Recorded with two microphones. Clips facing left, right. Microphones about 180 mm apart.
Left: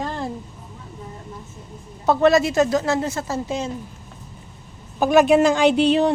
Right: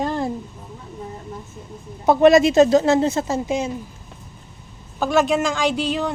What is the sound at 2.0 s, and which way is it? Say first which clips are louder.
Speech: right 3 dB; 15° right (ahead or behind).